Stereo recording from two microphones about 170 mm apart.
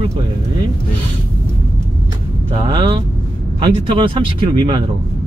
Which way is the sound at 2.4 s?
30° right (ahead or behind).